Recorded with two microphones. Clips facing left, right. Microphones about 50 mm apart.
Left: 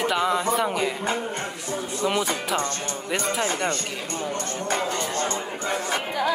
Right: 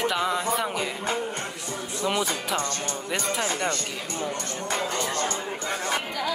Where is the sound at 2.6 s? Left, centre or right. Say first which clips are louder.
Left 1 dB; left.